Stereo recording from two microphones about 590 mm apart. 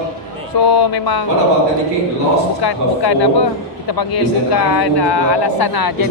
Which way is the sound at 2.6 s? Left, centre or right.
Left.